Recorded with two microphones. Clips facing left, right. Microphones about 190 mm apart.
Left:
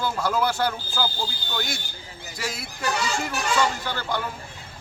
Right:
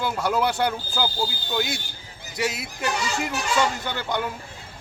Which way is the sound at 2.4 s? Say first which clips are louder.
Right 5 dB; 20° right (ahead or behind).